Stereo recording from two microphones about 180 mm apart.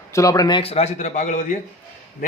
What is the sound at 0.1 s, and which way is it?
A man's voice, 20° left (ahead or behind).